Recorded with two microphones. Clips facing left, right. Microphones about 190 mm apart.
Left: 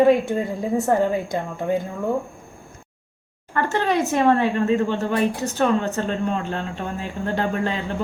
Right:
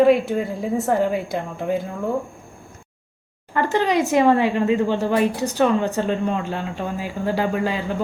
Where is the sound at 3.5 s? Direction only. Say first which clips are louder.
Right 2 dB; 15° right (ahead or behind).